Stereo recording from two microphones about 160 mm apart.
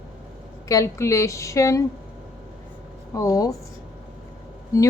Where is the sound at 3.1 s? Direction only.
20° left (ahead or behind).